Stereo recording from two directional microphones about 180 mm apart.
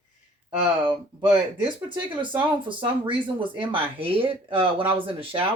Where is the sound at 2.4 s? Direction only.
30° right (ahead or behind).